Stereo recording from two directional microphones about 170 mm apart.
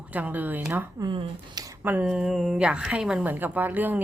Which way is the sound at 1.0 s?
25° right (ahead or behind).